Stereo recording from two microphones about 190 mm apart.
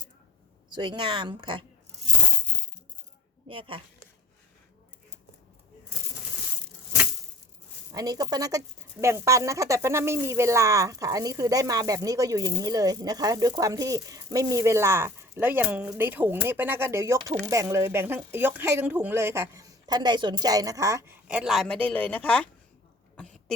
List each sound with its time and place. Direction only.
0.7 s speech: 25° right (ahead or behind)
3.5 s speech: 30° right (ahead or behind)
7.9 s speech: 20° right (ahead or behind)
21.2 s speech: 5° right (ahead or behind)
23.1 s throat clearing: 5° left (ahead or behind)